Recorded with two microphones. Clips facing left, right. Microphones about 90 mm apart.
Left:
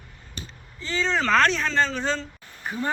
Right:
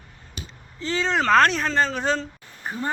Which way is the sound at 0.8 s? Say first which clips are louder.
Right 2 dB; 65° right (ahead or behind).